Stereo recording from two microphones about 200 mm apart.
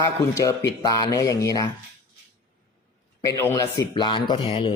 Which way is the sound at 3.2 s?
15° left (ahead or behind).